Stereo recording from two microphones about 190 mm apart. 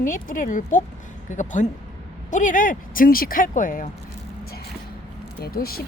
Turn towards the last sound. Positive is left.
turn(degrees=50)  # may be behind; listen again after turning